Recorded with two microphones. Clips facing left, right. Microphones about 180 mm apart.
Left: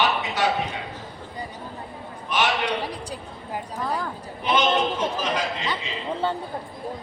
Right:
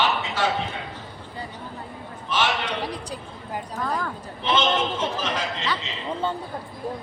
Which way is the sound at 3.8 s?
15° left (ahead or behind).